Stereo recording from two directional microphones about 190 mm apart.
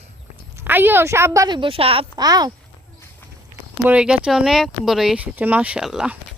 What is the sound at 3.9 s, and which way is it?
Speech, 5° right (ahead or behind).